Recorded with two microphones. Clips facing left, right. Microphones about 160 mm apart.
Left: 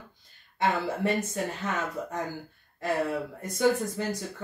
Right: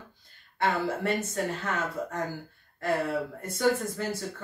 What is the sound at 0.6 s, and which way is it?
Speech, 15° left (ahead or behind).